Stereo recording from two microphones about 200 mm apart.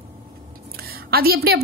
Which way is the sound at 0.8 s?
50° right (ahead or behind).